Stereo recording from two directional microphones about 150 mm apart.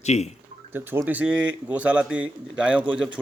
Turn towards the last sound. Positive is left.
turn(degrees=-10)  # may be behind; listen again after turning